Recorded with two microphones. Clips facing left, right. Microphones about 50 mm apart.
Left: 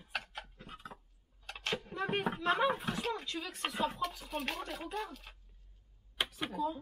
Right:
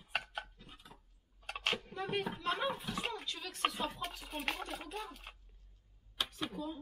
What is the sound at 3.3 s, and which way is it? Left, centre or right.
Speech, centre.